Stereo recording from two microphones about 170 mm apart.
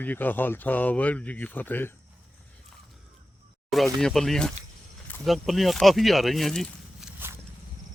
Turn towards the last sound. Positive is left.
turn(degrees=0)  # may be behind; listen again after turning